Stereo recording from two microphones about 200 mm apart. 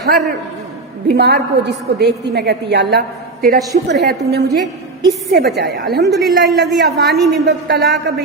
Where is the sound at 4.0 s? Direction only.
60° right (ahead or behind).